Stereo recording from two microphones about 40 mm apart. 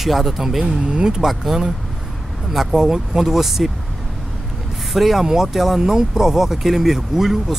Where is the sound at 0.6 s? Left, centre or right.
Right.